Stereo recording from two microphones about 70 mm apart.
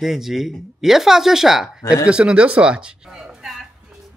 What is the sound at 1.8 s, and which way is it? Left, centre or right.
Speech, left.